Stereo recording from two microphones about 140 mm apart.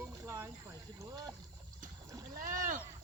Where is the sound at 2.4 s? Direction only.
70° right (ahead or behind).